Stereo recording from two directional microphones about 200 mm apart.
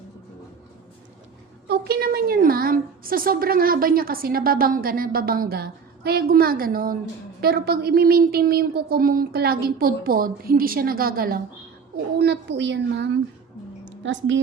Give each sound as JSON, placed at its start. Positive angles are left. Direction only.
{"t": 1.6, "sound": "a woman's voice", "side_deg": -55}
{"t": 12.2, "sound": "a woman's voice", "side_deg": -55}
{"t": 13.8, "sound": "a sound", "side_deg": -65}